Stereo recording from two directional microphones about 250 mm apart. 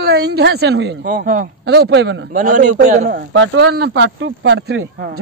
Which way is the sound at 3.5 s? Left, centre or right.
Right.